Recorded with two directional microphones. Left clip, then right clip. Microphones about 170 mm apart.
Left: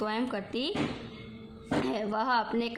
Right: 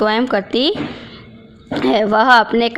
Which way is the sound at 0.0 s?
40° right (ahead or behind).